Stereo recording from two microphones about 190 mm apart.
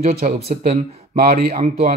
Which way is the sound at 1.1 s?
50° right (ahead or behind).